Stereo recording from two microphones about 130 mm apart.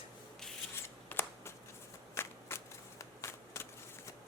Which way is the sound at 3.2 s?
20° left (ahead or behind).